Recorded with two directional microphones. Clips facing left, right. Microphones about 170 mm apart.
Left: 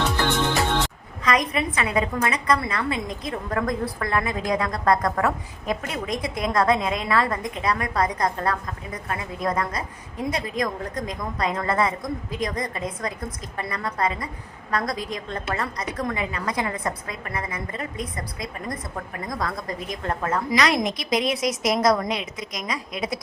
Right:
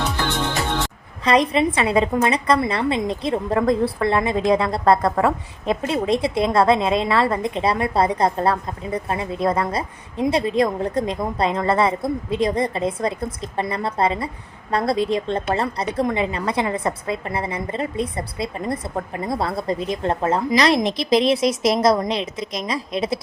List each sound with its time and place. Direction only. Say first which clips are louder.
1.2 s a woman's voice: right 6 dB; 30° right (ahead or behind)